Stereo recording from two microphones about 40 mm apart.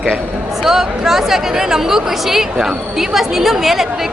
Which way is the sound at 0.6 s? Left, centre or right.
Centre.